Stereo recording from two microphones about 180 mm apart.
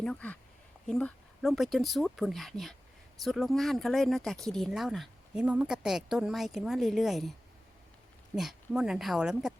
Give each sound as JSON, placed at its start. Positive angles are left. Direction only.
{"t": 0.0, "sound": "a woman's voice", "side_deg": 5}
{"t": 8.4, "sound": "a woman's voice", "side_deg": 0}